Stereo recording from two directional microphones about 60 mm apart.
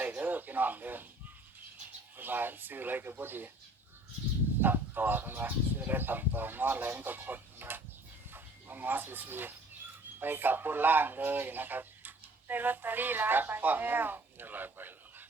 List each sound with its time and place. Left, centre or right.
0.0 s a sound: right
2.1 s a man's voice: right
4.6 s a man's voice: right